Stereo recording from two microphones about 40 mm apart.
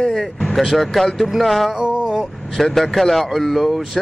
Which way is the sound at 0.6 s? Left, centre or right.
Centre.